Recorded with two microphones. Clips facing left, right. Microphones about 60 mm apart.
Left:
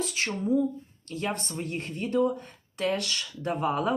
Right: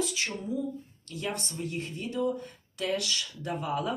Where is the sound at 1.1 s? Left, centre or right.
Left.